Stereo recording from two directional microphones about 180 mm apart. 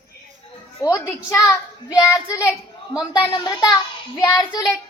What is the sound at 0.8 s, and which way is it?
A child's voice, 15° left (ahead or behind).